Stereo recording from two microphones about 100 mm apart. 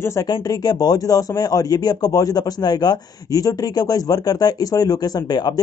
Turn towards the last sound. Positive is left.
turn(degrees=40)  # may be behind; listen again after turning